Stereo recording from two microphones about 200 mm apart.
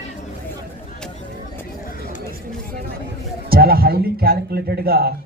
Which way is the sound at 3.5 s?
50° right (ahead or behind).